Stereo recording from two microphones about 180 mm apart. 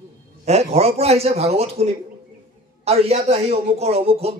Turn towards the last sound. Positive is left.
turn(degrees=-35)  # may be behind; listen again after turning